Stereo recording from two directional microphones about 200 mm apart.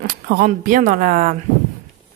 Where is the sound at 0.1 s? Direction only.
50° right (ahead or behind).